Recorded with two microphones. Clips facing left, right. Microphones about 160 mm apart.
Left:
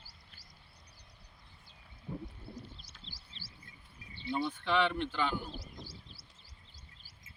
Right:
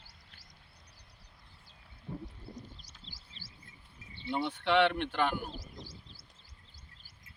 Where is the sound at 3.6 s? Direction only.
25° right (ahead or behind).